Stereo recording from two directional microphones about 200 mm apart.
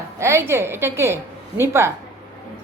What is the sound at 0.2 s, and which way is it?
Speech, 15° right (ahead or behind).